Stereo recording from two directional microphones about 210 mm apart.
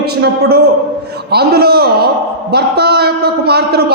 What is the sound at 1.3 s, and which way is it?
A man's voice, 50° right (ahead or behind).